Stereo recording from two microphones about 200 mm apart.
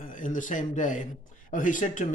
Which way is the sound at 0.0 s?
40° left (ahead or behind).